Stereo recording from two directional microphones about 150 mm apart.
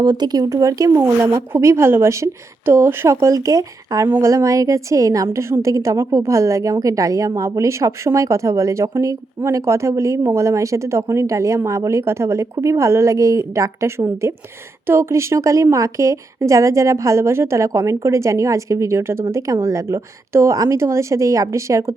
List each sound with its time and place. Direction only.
0.0 s speech: 30° right (ahead or behind)